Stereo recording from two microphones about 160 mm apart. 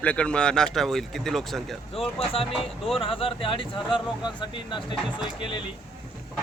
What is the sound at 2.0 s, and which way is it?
Speech, 35° left (ahead or behind).